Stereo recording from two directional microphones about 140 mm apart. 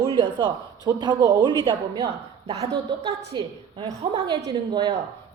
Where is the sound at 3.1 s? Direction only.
30° right (ahead or behind).